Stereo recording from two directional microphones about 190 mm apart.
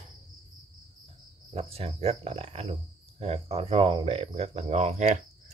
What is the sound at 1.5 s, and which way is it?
Speech, 30° right (ahead or behind).